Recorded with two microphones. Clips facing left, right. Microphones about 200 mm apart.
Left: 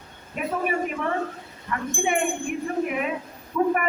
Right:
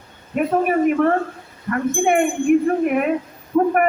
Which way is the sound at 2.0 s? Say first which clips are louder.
Right 9 dB; 55° right (ahead or behind).